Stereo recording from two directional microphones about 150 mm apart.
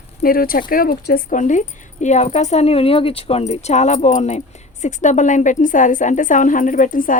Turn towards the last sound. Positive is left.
turn(degrees=65)  # may be behind; listen again after turning